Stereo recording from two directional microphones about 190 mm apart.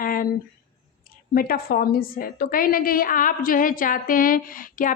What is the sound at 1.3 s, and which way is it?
Speech, 50° left (ahead or behind).